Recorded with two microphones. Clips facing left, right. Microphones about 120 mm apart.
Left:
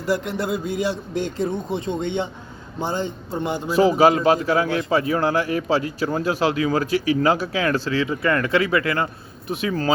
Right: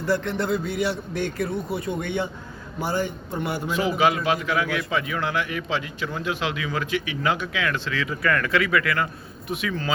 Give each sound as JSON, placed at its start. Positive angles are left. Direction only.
{"t": 0.0, "sound": "a man's voice", "side_deg": 15}
{"t": 3.7, "sound": "a man's voice", "side_deg": 35}